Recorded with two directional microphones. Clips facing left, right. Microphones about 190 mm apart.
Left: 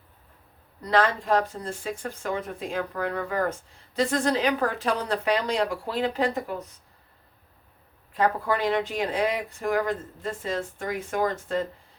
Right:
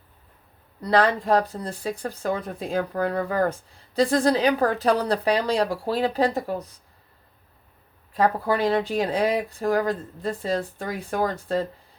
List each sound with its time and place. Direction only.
0.8 s speech: 35° right (ahead or behind)
8.1 s speech: 35° right (ahead or behind)